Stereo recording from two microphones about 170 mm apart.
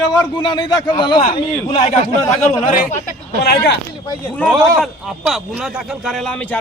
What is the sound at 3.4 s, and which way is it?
Speech, 70° left (ahead or behind).